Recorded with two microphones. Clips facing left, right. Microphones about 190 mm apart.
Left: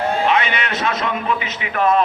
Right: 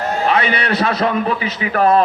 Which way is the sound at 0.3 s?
35° right (ahead or behind).